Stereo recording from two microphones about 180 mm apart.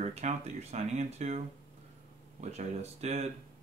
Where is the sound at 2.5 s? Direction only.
35° right (ahead or behind).